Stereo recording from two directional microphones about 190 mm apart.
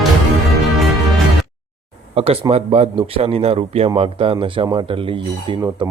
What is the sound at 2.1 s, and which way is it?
A man's voice, 30° right (ahead or behind).